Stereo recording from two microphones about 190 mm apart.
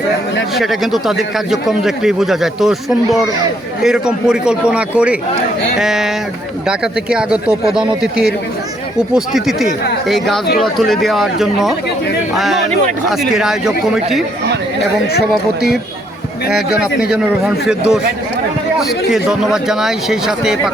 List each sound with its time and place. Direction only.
0.5 s a man's voice: centre (ahead or behind)
13.1 s a man's voice: centre (ahead or behind)
15.3 s a man's voice: centre (ahead or behind)